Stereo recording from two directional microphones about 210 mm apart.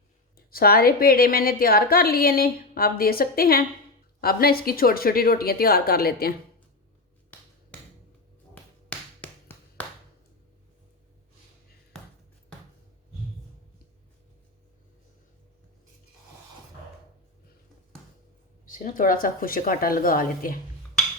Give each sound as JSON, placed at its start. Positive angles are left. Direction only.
{"t": 0.3, "sound": "a woman's voice", "side_deg": 45}
{"t": 8.5, "sound": "music", "side_deg": 5}
{"t": 18.6, "sound": "a woman's voice", "side_deg": 40}